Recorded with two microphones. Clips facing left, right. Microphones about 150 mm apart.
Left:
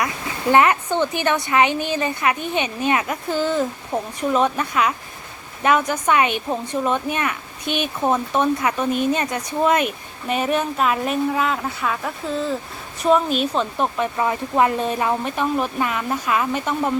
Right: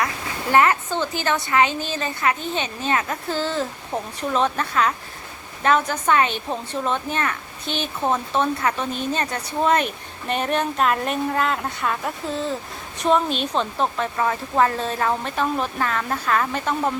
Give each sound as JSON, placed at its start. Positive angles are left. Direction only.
{"t": 0.5, "sound": "a woman's voice", "side_deg": 20}